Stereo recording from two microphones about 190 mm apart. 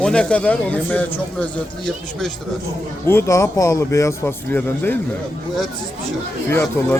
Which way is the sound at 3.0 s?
15° left (ahead or behind).